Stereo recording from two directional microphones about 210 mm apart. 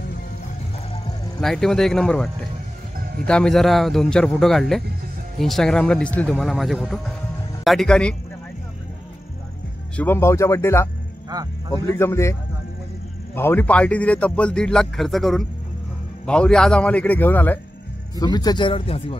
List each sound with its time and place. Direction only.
1.4 s a man's voice: centre (ahead or behind)
3.3 s a man's voice: 5° left (ahead or behind)
9.9 s speech: 10° left (ahead or behind)
11.3 s speech: 20° right (ahead or behind)
11.7 s a man's voice: 10° left (ahead or behind)